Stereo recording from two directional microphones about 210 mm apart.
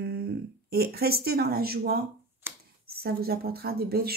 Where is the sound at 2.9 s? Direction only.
45° right (ahead or behind).